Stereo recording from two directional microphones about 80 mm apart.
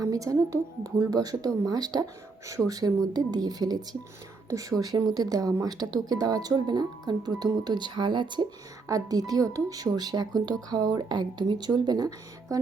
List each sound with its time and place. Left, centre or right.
0.0 s a woman's voice: right
8.9 s speech: right